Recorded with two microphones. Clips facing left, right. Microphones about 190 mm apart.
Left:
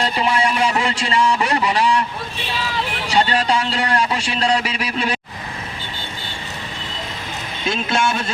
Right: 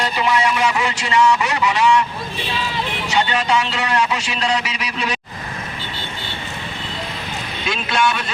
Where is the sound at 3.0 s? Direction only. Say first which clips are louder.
Left 2 dB; 35° left (ahead or behind).